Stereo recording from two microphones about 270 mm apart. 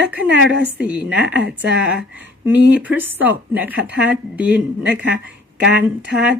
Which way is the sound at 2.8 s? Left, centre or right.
Centre.